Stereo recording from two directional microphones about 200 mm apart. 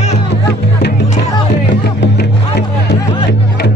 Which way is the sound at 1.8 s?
55° left (ahead or behind).